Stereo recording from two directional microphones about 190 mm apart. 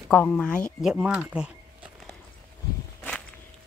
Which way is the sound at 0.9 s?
5° right (ahead or behind).